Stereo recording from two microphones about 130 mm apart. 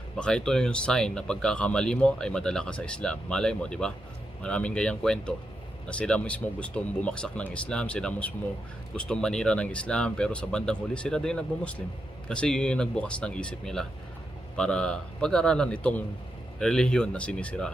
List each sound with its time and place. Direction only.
0.2 s speech: 5° left (ahead or behind)